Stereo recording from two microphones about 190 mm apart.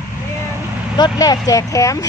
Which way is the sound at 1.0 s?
20° left (ahead or behind).